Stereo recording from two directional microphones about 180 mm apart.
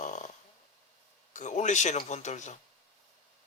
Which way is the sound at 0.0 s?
40° left (ahead or behind).